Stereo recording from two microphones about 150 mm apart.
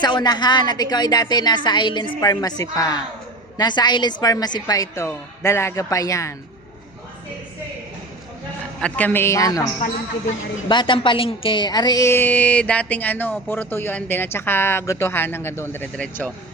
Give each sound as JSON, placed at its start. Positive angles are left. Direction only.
{"t": 0.0, "sound": "a woman's voice", "side_deg": 30}
{"t": 8.8, "sound": "speech", "side_deg": 10}
{"t": 10.7, "sound": "a woman's voice", "side_deg": 30}